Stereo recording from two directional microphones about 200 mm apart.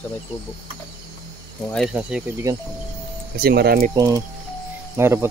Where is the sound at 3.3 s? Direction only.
50° right (ahead or behind).